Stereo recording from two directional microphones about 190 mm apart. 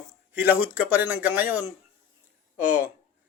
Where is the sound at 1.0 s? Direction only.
10° right (ahead or behind).